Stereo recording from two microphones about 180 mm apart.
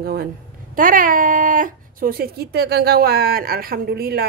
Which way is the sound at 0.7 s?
50° right (ahead or behind).